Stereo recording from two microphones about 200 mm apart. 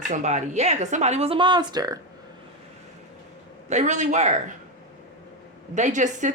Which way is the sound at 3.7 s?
35° right (ahead or behind).